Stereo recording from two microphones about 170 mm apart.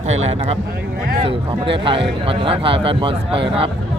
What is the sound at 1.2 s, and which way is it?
Speech, 30° right (ahead or behind).